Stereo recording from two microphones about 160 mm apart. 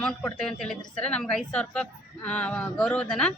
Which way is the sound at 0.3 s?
Centre (ahead or behind).